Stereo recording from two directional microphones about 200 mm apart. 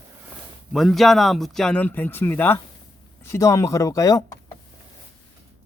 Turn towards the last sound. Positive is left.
turn(degrees=15)  # may be behind; listen again after turning